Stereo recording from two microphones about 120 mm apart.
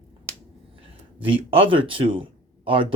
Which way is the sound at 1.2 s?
50° right (ahead or behind).